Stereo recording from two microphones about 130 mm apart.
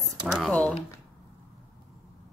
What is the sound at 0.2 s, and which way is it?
Speech, centre (ahead or behind).